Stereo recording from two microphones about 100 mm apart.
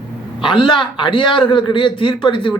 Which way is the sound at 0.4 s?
55° left (ahead or behind).